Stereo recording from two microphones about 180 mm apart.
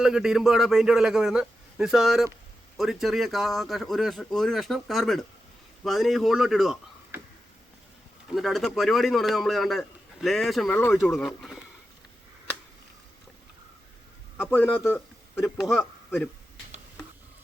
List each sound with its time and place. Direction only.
0.0 s a man's voice: centre (ahead or behind)
8.3 s a man's voice: centre (ahead or behind)
14.3 s a man's voice: 10° left (ahead or behind)
15.4 s a man's voice: 5° right (ahead or behind)